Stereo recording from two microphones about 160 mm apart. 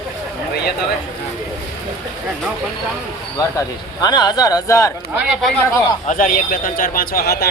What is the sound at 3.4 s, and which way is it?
Speech, 20° left (ahead or behind).